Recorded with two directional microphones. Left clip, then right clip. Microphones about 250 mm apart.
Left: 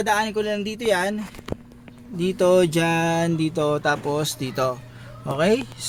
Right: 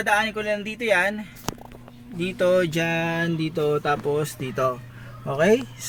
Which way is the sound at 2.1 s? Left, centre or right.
Centre.